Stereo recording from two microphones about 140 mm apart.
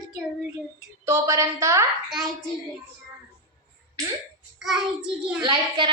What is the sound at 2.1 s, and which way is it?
Speech, centre (ahead or behind).